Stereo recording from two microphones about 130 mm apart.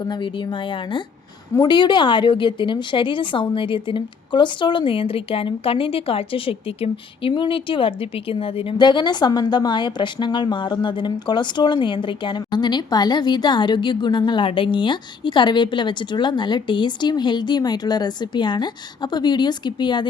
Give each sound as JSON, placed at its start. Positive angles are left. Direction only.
{"t": 0.0, "sound": "a woman's voice", "side_deg": 35}